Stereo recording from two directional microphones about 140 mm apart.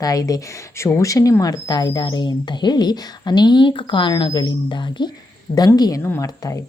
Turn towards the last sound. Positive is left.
turn(degrees=25)  # may be behind; listen again after turning